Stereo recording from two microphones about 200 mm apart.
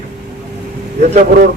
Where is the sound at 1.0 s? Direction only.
40° right (ahead or behind).